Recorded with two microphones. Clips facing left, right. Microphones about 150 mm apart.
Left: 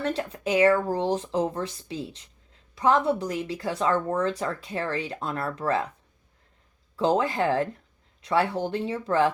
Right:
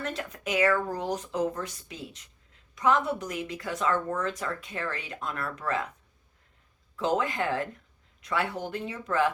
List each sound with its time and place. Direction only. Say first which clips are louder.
0.0 s speech: left 6 dB; 30° left (ahead or behind)
6.9 s speech: left 4 dB; 30° left (ahead or behind)